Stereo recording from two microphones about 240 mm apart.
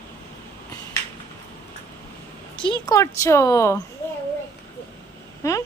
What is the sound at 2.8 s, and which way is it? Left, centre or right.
Speech, centre.